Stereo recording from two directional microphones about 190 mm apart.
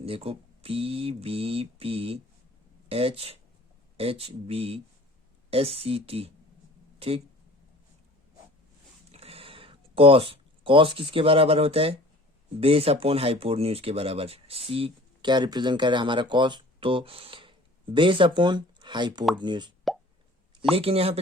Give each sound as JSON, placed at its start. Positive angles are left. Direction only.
{"t": 0.0, "sound": "speech", "side_deg": -30}
{"t": 9.1, "sound": "a sound", "side_deg": -30}
{"t": 12.5, "sound": "speech", "side_deg": -30}
{"t": 20.7, "sound": "speech", "side_deg": -30}